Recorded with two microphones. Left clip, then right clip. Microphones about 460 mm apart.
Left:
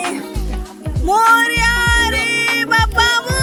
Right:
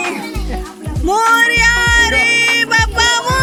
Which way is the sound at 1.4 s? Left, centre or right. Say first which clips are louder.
Right 4 dB; left.